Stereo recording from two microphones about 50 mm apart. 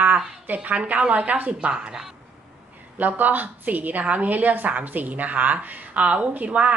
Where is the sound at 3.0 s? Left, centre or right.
Right.